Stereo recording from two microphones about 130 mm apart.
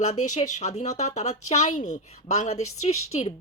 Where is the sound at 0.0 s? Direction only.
65° left (ahead or behind).